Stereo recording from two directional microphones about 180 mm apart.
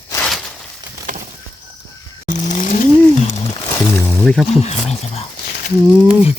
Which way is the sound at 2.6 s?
45° left (ahead or behind).